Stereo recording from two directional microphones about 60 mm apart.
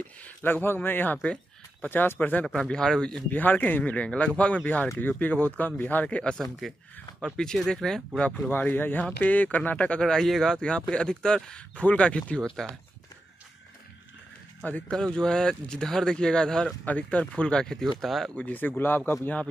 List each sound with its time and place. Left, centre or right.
0.2 s speech: left
1.2 s a sound: centre
1.9 s speech: left
2.7 s speech: centre
3.3 s speech: left
6.0 s speech: centre
6.6 s speech: centre
8.5 s speech: left
10.0 s speech: centre
14.6 s speech: left
15.1 s speech: centre
16.8 s speech: left
17.5 s speech: centre
18.3 s speech: left